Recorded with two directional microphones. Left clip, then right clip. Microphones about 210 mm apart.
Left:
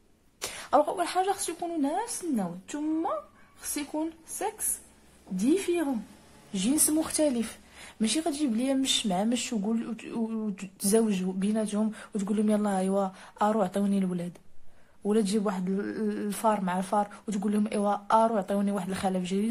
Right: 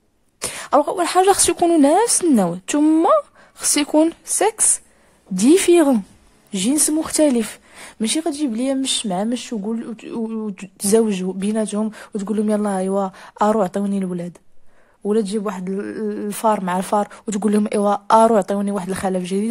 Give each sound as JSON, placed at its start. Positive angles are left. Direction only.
{"t": 0.4, "sound": "speech", "side_deg": -30}
{"t": 6.5, "sound": "a woman's voice", "side_deg": -30}